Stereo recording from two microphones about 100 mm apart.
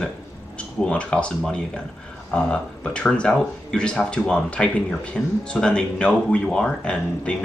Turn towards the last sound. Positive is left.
turn(degrees=10)  # may be behind; listen again after turning